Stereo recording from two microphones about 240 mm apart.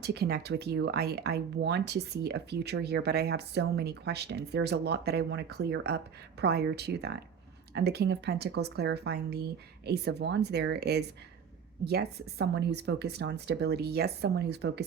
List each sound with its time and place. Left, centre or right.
0.0 s speech: right